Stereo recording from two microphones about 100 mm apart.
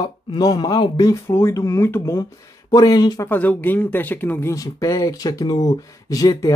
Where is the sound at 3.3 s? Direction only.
15° left (ahead or behind).